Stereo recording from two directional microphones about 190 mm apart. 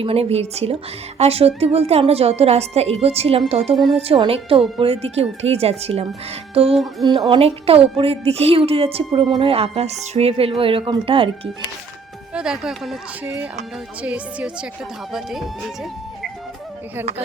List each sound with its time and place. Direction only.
0.0 s a woman's voice: 30° right (ahead or behind)
6.5 s music: 30° right (ahead or behind)
7.0 s a woman's voice: 25° right (ahead or behind)
12.3 s speech: 5° right (ahead or behind)